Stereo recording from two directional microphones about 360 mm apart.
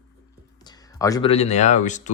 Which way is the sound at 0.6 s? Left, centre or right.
Centre.